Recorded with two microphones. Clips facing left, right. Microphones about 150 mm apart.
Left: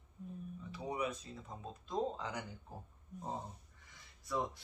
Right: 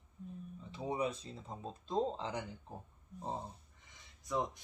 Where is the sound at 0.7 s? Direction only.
30° right (ahead or behind).